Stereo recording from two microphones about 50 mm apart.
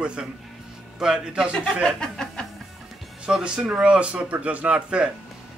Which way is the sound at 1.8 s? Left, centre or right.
Centre.